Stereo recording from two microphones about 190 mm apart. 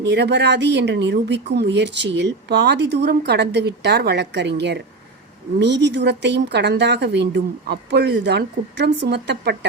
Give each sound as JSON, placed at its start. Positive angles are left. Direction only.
{"t": 0.0, "sound": "a woman's voice", "side_deg": -65}